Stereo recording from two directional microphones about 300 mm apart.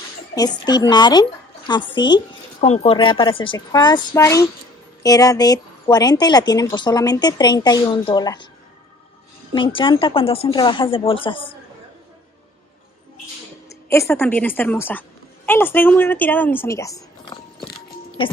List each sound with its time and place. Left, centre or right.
0.3 s speech: centre
9.5 s speech: centre
13.7 s speech: centre